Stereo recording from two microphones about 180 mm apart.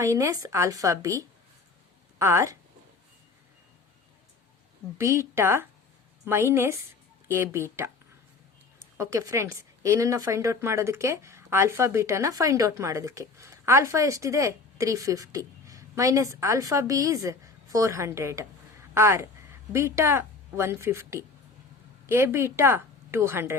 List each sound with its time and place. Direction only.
0.0 s speech: 15° right (ahead or behind)
4.9 s a woman's voice: 15° right (ahead or behind)